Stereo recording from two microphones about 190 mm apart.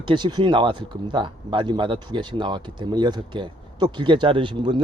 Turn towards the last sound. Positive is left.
turn(degrees=-25)  # may be behind; listen again after turning